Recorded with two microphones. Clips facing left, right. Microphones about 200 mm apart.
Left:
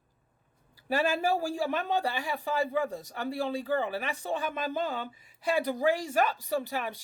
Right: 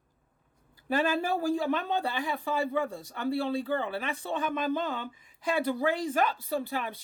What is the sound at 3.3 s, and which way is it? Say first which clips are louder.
Speech: right 2 dB; 15° left (ahead or behind).